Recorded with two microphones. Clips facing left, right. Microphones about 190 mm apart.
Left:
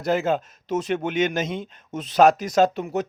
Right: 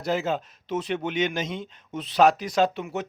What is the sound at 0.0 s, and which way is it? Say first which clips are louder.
Speech: left 4 dB; 55° left (ahead or behind).